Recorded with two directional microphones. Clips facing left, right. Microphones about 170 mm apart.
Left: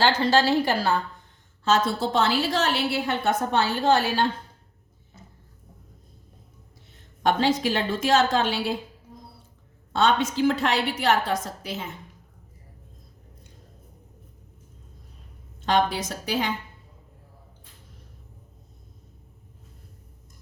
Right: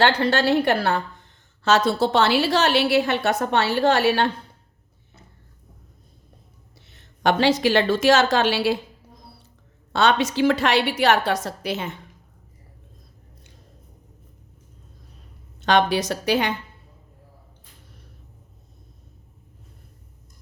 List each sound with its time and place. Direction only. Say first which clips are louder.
0.0 s a woman's voice: right 1 dB; 60° right (ahead or behind)
6.8 s a woman's voice: right 2 dB; 75° right (ahead or behind)
9.9 s a woman's voice: right 2 dB; 80° right
15.6 s a woman's voice: right 4 dB; 75° right (ahead or behind)